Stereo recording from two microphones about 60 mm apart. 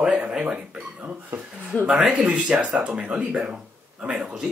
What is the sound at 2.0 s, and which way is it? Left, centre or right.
Speech, centre.